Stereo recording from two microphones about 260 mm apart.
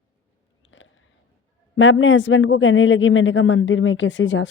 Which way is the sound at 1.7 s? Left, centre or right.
Left.